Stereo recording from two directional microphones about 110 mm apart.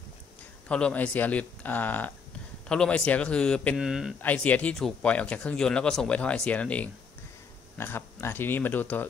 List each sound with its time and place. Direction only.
0.7 s speech: 10° left (ahead or behind)
3.7 s speech: 5° right (ahead or behind)
4.2 s speech: 15° left (ahead or behind)